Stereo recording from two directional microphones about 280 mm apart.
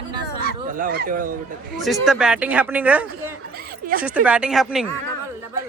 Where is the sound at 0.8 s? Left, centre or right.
Right.